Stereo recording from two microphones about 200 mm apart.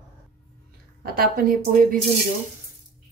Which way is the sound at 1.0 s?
50° right (ahead or behind).